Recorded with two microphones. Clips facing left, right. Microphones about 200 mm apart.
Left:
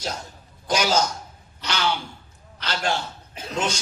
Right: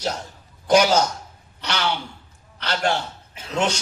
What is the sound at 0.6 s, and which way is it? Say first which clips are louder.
Speech: right 5 dB; 60° right (ahead or behind).